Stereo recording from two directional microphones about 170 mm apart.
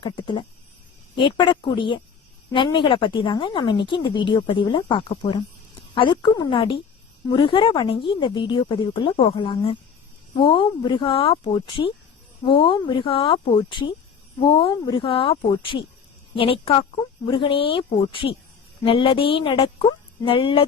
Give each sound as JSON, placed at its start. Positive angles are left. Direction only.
{"t": 0.0, "sound": "a woman's voice", "side_deg": 30}